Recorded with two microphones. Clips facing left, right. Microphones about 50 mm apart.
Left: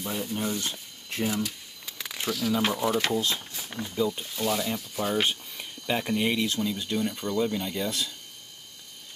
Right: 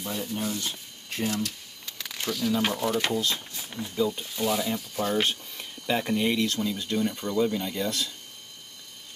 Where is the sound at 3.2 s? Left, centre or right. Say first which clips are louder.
Even; centre.